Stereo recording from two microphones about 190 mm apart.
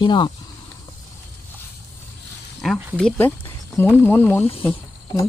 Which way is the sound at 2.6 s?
5° left (ahead or behind).